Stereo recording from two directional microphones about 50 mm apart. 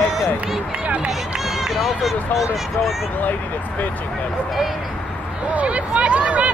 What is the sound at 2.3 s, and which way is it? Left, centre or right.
Speech, left.